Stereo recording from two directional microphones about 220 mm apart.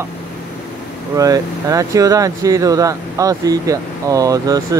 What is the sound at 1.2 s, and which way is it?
Speech, 15° right (ahead or behind).